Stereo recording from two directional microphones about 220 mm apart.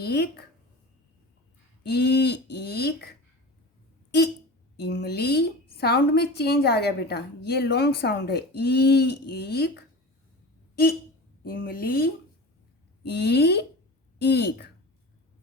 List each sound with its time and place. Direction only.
0.0 s a woman's voice: 45° left (ahead or behind)
1.8 s a woman's voice: 50° left (ahead or behind)
4.8 s a woman's voice: 45° left (ahead or behind)
11.4 s a woman's voice: 45° left (ahead or behind)